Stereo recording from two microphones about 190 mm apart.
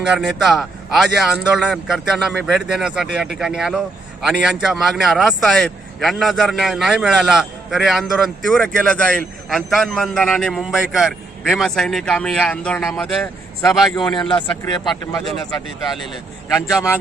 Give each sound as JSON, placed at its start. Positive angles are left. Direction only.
{"t": 0.1, "sound": "speech", "side_deg": 0}
{"t": 13.9, "sound": "a man's voice", "side_deg": 25}